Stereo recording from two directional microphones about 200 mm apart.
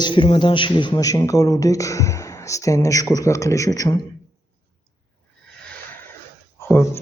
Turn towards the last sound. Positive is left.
turn(degrees=15)  # may be behind; listen again after turning